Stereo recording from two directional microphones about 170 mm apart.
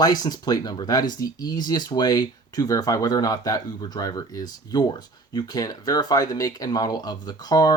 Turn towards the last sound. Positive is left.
turn(degrees=25)  # may be behind; listen again after turning